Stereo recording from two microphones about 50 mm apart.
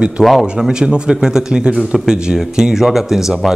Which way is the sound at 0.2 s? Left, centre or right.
Centre.